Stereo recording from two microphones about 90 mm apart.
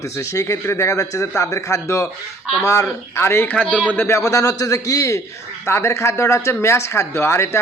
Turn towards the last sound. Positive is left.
turn(degrees=30)  # may be behind; listen again after turning